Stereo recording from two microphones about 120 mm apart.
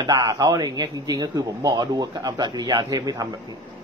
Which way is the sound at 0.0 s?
30° right (ahead or behind).